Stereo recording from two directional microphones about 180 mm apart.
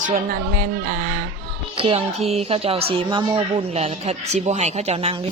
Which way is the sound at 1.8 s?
30° right (ahead or behind).